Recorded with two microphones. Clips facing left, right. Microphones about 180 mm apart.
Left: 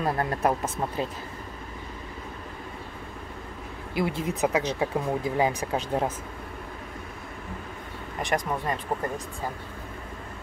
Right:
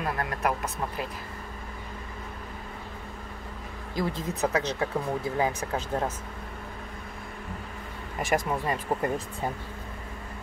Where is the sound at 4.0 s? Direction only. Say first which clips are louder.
Left 2 dB; 10° left (ahead or behind).